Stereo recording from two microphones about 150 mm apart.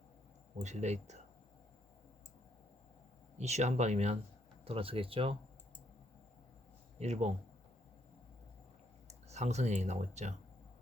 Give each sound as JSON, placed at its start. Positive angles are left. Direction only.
{"t": 0.6, "sound": "speech", "side_deg": -50}
{"t": 3.3, "sound": "speech", "side_deg": -45}
{"t": 7.0, "sound": "speech", "side_deg": -50}
{"t": 9.0, "sound": "speech", "side_deg": -50}